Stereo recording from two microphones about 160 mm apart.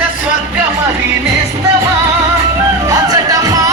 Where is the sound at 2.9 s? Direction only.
20° right (ahead or behind).